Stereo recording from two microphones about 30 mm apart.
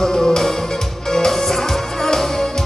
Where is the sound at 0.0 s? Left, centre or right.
Centre.